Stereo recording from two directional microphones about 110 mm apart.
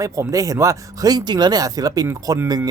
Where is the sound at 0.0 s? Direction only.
30° right (ahead or behind).